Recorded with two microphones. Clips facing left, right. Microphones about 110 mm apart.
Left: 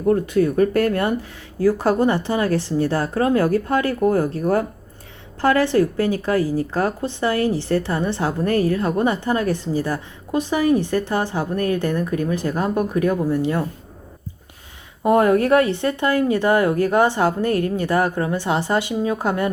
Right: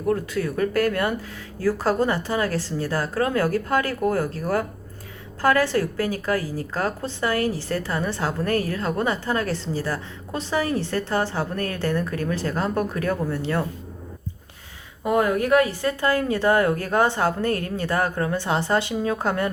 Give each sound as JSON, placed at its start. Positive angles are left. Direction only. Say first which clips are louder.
{"t": 0.0, "sound": "a woman's voice", "louder": "left 6 dB", "side_deg": 25}
{"t": 15.0, "sound": "a woman's voice", "louder": "left 5 dB", "side_deg": 25}